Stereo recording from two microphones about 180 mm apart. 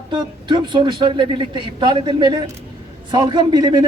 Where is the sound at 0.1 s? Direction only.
25° right (ahead or behind).